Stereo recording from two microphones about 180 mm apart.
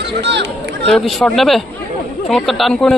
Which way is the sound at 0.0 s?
70° right (ahead or behind).